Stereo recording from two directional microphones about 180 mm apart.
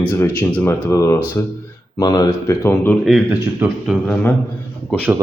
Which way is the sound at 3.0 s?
5° right (ahead or behind).